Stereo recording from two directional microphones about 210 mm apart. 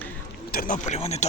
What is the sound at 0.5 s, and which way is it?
Speech, 40° left (ahead or behind).